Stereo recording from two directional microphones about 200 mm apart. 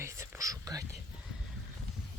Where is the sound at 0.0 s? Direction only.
15° right (ahead or behind).